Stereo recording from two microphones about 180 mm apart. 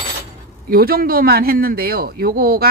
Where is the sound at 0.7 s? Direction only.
55° right (ahead or behind).